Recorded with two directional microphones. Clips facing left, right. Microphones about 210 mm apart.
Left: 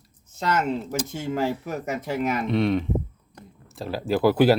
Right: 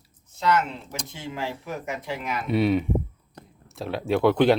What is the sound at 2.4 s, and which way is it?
Speech, 5° right (ahead or behind).